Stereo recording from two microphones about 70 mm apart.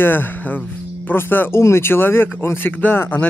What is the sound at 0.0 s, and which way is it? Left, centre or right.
Speech, left.